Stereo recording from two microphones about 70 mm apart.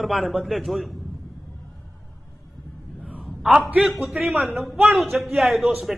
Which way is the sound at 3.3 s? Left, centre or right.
Centre.